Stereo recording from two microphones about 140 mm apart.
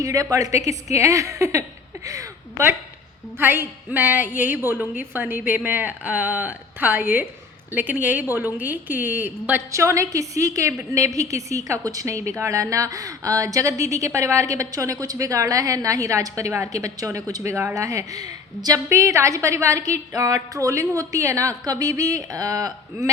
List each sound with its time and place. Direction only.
0.0 s a woman's voice: 25° right (ahead or behind)